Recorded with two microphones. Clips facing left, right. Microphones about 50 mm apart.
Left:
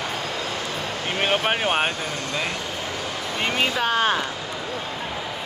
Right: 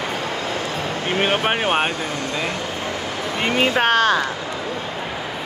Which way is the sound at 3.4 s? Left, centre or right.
Centre.